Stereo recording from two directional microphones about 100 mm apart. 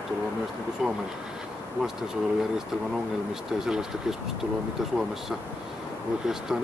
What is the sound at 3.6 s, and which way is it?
Speech, 5° right (ahead or behind).